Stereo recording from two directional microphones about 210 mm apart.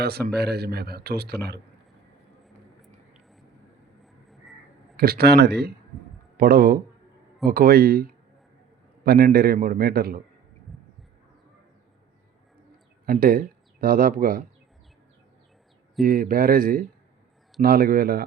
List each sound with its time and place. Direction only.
0.0 s speech: 50° right (ahead or behind)
4.0 s a sound: centre (ahead or behind)
4.9 s speech: 45° right (ahead or behind)
9.0 s speech: 45° right (ahead or behind)
13.1 s speech: 45° right (ahead or behind)
16.0 s speech: 45° right (ahead or behind)